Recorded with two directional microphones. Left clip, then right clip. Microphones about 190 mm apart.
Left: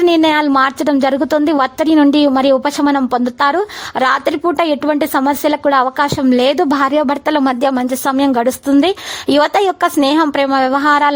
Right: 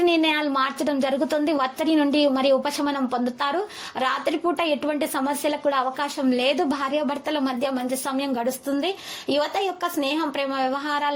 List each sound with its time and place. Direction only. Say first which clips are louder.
0.0 s a woman's voice: left 9 dB; 40° left (ahead or behind)